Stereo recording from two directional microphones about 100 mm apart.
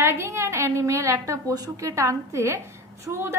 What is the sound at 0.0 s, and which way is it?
A woman's voice, 25° right (ahead or behind).